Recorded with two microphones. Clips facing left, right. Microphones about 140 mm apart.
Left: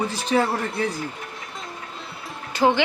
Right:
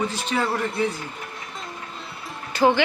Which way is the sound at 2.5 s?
15° left (ahead or behind).